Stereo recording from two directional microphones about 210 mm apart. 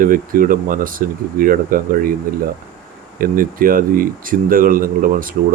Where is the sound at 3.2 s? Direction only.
40° right (ahead or behind).